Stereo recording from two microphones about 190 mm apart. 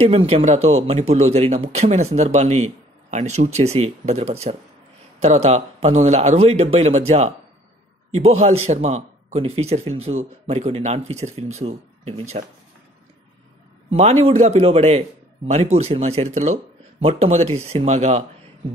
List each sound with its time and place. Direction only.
0.0 s speech: 30° right (ahead or behind)
13.9 s speech: 35° right (ahead or behind)